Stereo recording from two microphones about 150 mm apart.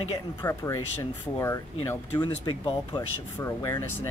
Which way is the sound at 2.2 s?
30° left (ahead or behind).